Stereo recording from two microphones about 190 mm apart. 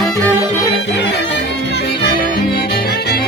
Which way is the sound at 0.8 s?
65° left (ahead or behind).